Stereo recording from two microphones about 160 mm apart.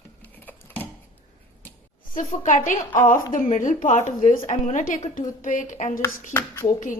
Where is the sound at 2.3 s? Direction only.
55° left (ahead or behind).